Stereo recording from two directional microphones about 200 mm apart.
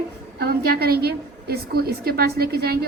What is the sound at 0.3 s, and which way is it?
A woman's voice, 50° right (ahead or behind).